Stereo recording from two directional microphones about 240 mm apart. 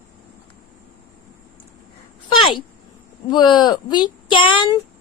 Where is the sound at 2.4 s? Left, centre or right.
Centre.